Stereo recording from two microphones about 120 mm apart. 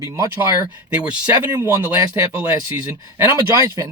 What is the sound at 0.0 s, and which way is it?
Speech, 25° right (ahead or behind).